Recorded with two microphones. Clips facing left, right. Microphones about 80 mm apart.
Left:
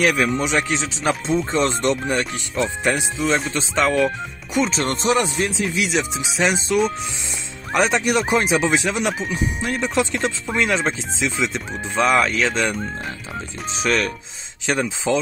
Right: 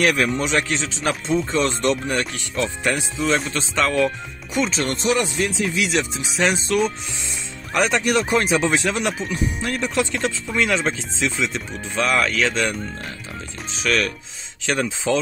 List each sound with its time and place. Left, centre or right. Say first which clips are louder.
0.0 s speech: left 1 dB; centre
1.5 s speech: left 1 dB; left
4.6 s speech: left 1 dB; left